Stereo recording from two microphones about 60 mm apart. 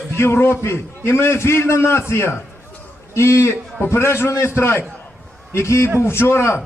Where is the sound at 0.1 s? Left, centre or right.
Left.